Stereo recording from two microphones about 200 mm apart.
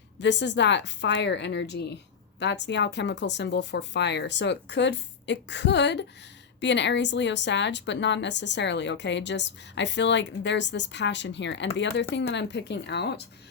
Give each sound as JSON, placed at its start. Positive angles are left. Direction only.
{"t": 0.2, "sound": "a woman's voice", "side_deg": 60}